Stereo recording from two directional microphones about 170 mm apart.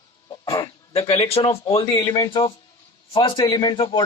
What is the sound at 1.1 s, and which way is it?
Speech, 35° left (ahead or behind).